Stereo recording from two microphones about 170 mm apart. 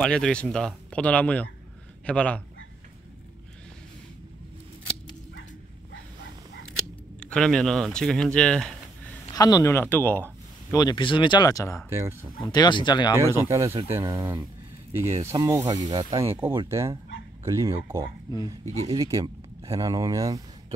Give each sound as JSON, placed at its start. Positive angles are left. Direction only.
{"t": 0.0, "sound": "a man's voice", "side_deg": 5}
{"t": 7.2, "sound": "speech", "side_deg": 5}
{"t": 9.3, "sound": "speech", "side_deg": 20}
{"t": 10.8, "sound": "speech", "side_deg": 25}
{"t": 11.9, "sound": "speech", "side_deg": -15}
{"t": 12.4, "sound": "speech", "side_deg": 25}
{"t": 13.4, "sound": "speech", "side_deg": -15}
{"t": 18.3, "sound": "speech", "side_deg": 25}
{"t": 19.0, "sound": "speech", "side_deg": -20}